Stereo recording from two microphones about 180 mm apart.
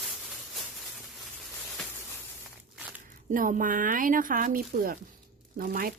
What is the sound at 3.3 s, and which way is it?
Speech, 50° right (ahead or behind).